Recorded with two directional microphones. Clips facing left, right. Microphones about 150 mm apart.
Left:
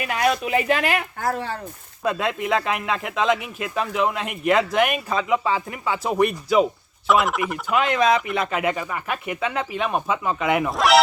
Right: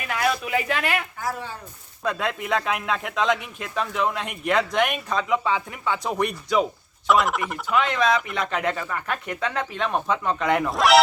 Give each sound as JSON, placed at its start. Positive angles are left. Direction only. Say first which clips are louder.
{"t": 0.2, "sound": "speech", "louder": "left 3 dB", "side_deg": 15}
{"t": 0.5, "sound": "speech", "louder": "left 4 dB", "side_deg": 35}
{"t": 1.2, "sound": "speech", "louder": "left 5 dB", "side_deg": 65}
{"t": 2.0, "sound": "speech", "louder": "left 3 dB", "side_deg": 5}
{"t": 7.7, "sound": "speech", "louder": "left 2 dB", "side_deg": 10}